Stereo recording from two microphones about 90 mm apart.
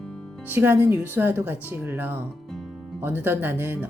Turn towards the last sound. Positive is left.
turn(degrees=-20)  # may be behind; listen again after turning